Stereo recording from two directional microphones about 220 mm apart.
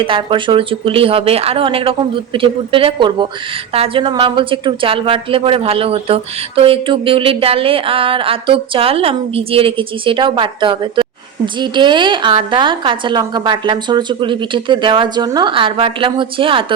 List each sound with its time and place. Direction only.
0.0 s a woman's voice: 20° right (ahead or behind)